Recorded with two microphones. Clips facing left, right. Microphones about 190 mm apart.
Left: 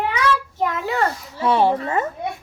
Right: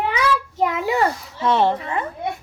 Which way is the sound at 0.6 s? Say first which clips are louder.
Right 5 dB; 15° right (ahead or behind).